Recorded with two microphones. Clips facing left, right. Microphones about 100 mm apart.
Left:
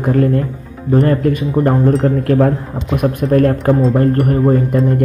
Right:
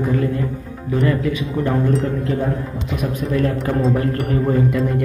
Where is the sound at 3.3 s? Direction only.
55° left (ahead or behind).